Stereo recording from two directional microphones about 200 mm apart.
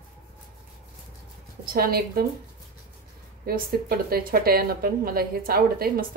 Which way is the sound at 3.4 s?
50° right (ahead or behind).